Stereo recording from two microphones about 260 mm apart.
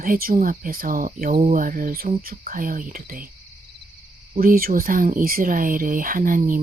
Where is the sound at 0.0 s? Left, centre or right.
Right.